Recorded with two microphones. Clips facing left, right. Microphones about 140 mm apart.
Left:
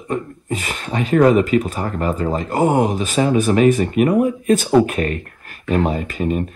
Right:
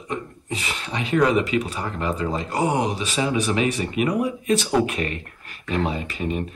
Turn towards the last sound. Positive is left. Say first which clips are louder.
# left 6 dB
turn(degrees=45)  # may be behind; listen again after turning